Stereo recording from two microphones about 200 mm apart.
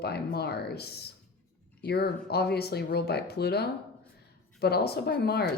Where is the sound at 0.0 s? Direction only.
55° left (ahead or behind).